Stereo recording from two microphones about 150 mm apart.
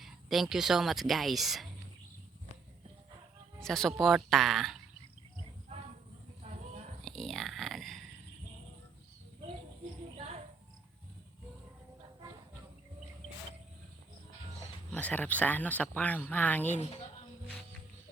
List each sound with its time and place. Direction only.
0.0 s speech: centre (ahead or behind)
3.6 s speech: 5° left (ahead or behind)
7.0 s a sound: 5° left (ahead or behind)
14.8 s speech: 10° left (ahead or behind)
16.7 s speech: 45° left (ahead or behind)